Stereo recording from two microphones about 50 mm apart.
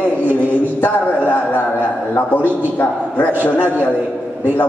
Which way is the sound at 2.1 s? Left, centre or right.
Left.